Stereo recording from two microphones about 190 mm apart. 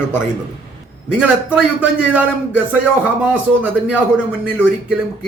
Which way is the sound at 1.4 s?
5° right (ahead or behind).